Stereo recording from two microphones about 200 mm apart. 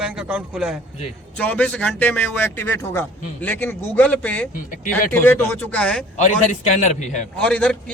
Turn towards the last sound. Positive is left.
turn(degrees=5)  # may be behind; listen again after turning